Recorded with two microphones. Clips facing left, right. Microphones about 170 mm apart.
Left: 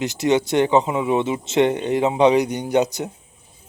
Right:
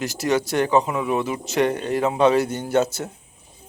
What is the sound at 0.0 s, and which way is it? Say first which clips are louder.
Speech: left 3 dB; 20° left (ahead or behind).